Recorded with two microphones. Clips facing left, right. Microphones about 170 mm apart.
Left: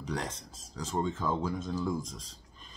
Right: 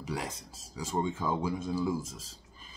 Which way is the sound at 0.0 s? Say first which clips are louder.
Left 1 dB; 5° right (ahead or behind).